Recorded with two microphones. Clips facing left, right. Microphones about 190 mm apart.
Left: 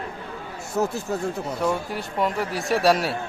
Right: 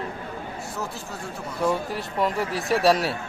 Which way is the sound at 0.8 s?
45° left (ahead or behind).